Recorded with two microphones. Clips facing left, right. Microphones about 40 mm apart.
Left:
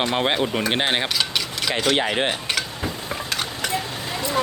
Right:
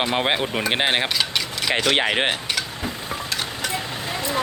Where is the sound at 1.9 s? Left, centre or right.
Right.